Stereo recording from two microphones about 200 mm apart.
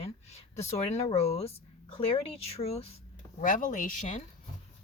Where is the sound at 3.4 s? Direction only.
40° left (ahead or behind).